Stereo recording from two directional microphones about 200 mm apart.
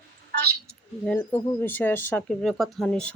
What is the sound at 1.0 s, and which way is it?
Speech, 10° left (ahead or behind).